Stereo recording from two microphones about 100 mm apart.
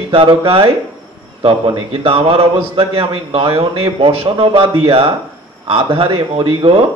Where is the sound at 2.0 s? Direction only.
70° right (ahead or behind).